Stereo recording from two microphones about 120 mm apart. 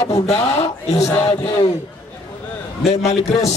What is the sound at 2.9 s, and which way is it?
Speech, 65° left (ahead or behind).